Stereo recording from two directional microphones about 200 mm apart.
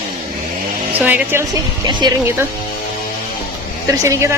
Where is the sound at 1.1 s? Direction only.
10° right (ahead or behind).